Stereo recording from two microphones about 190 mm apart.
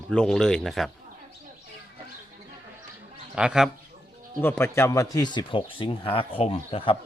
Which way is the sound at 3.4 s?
5° right (ahead or behind).